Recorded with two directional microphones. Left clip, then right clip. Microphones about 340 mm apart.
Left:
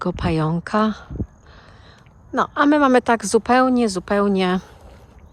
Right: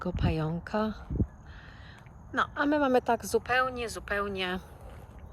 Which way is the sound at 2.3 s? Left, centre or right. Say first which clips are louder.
Left 11 dB; centre.